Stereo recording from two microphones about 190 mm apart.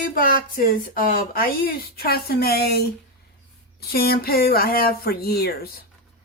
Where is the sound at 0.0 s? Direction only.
45° left (ahead or behind).